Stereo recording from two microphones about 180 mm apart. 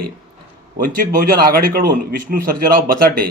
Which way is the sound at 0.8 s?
50° right (ahead or behind).